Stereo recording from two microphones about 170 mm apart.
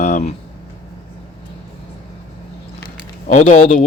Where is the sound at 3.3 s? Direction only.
45° left (ahead or behind).